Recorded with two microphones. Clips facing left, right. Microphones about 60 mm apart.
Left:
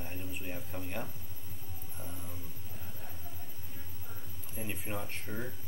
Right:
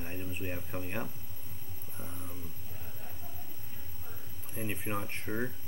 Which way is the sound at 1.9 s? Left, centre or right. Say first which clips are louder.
Right 1 dB; centre.